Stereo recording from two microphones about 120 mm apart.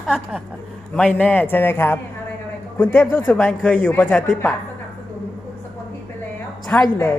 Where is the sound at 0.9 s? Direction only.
10° left (ahead or behind).